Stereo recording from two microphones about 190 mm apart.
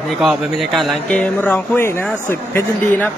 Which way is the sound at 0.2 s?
Centre (ahead or behind).